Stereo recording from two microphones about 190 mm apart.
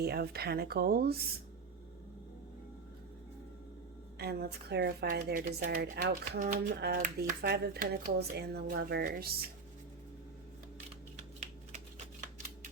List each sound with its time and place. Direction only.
0.0 s speech: 55° right (ahead or behind)
4.2 s speech: 55° right (ahead or behind)
11.3 s typing: 35° right (ahead or behind)